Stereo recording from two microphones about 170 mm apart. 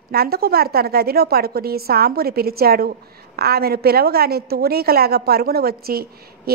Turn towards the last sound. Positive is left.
turn(degrees=-65)  # may be behind; listen again after turning